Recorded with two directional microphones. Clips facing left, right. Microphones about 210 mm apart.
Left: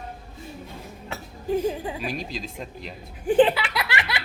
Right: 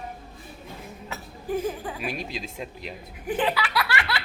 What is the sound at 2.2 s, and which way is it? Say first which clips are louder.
Speech: even; 5° right (ahead or behind).